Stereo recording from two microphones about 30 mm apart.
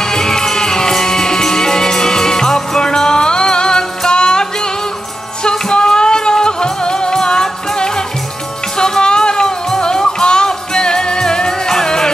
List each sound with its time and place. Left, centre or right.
0.0 s music: centre